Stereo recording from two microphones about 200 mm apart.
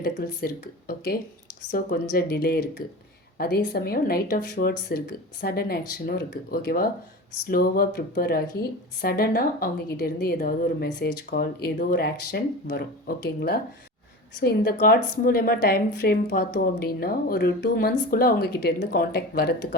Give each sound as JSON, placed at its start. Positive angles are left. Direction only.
{"t": 0.0, "sound": "a woman's voice", "side_deg": 50}